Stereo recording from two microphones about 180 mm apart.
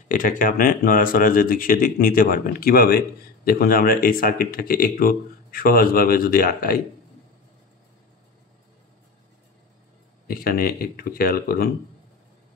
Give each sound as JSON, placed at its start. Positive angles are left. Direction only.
{"t": 0.1, "sound": "a man's voice", "side_deg": 50}
{"t": 10.2, "sound": "speech", "side_deg": 55}